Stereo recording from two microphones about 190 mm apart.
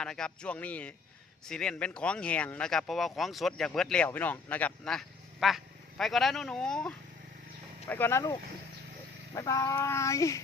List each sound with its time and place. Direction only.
0.0 s speech: 5° left (ahead or behind)